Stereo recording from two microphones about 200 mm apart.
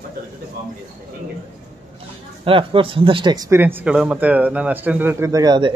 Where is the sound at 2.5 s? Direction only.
25° right (ahead or behind).